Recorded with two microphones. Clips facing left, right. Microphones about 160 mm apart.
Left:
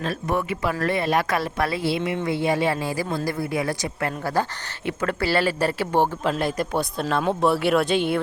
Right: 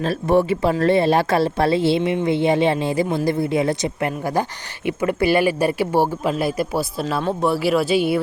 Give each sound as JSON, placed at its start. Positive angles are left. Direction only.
{"t": 0.0, "sound": "speech", "side_deg": -30}